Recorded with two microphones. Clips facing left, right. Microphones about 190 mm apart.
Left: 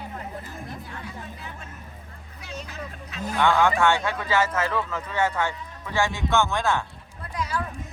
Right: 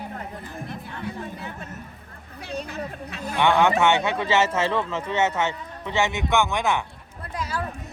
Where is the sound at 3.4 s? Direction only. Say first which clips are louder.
Right 2 dB; 20° right (ahead or behind).